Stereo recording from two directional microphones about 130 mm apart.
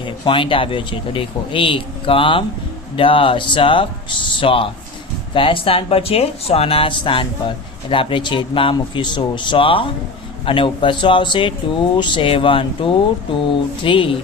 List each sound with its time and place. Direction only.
0.0 s speech: 40° left (ahead or behind)